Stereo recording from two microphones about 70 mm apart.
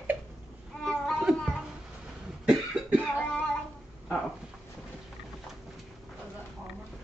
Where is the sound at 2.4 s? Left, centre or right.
Centre.